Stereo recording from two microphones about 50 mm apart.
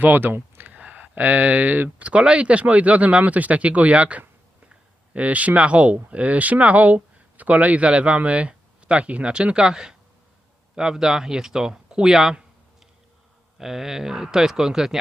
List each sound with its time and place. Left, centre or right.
0.0 s speech: right
0.7 s a sound: right
2.0 s speech: right
13.6 s speech: centre